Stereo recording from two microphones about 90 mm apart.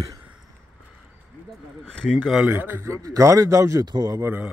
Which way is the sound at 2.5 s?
20° right (ahead or behind).